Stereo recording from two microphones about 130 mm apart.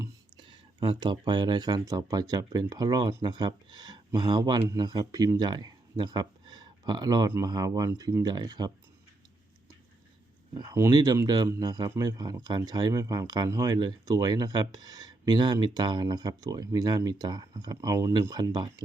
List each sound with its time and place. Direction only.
0.3 s speech: 35° right (ahead or behind)
10.5 s speech: 30° right (ahead or behind)